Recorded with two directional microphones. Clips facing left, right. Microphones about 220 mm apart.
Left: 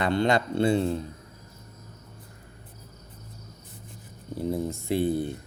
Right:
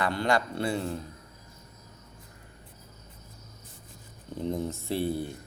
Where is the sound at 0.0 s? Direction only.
25° left (ahead or behind).